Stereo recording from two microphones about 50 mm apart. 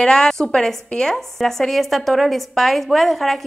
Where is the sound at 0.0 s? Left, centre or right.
Centre.